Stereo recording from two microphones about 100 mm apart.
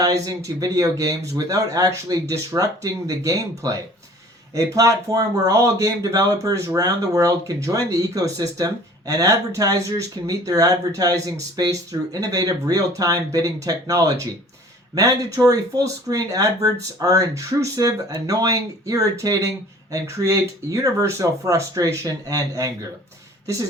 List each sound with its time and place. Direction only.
0.0 s speech: 35° right (ahead or behind)